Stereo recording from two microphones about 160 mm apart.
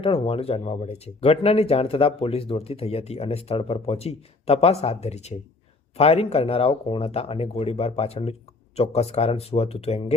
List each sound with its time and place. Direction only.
0.0 s speech: 35° left (ahead or behind)